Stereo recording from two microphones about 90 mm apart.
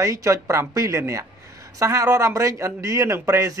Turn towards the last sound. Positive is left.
turn(degrees=-40)  # may be behind; listen again after turning